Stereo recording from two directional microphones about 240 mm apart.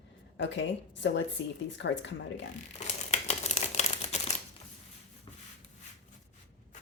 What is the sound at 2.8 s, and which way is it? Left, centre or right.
Crumpling, left.